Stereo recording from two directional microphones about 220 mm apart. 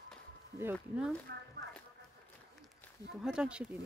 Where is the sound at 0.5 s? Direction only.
5° right (ahead or behind).